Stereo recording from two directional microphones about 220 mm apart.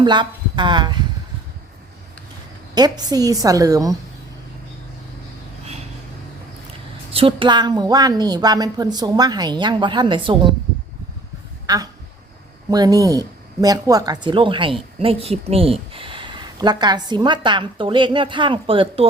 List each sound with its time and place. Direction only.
0.0 s speech: 20° right (ahead or behind)
2.7 s a woman's voice: 20° right (ahead or behind)
7.1 s speech: 25° right (ahead or behind)
11.6 s a sound: 15° right (ahead or behind)
12.7 s speech: 15° right (ahead or behind)